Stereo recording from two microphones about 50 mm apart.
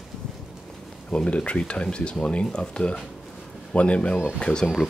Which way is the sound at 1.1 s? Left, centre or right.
Left.